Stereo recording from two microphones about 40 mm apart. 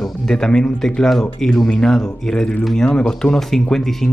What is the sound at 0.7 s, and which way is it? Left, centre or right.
Speech, centre.